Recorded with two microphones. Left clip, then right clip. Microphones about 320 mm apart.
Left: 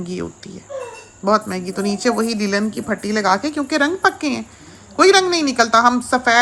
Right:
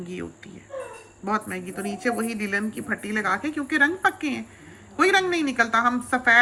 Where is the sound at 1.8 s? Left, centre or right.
Centre.